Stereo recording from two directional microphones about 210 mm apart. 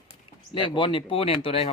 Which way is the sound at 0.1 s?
20° left (ahead or behind).